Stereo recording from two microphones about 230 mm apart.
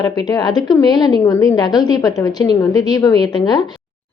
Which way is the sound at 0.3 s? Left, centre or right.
Centre.